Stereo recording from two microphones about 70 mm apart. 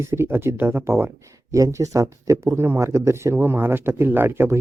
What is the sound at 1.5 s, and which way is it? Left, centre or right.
Speech, right.